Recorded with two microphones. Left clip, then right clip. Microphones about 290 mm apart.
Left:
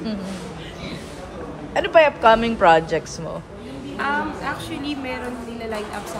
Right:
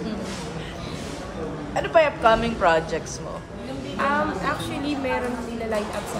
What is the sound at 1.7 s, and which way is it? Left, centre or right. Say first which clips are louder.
A woman's voice: left 4 dB; left.